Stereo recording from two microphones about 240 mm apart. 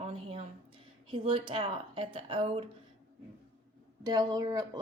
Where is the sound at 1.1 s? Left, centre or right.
Right.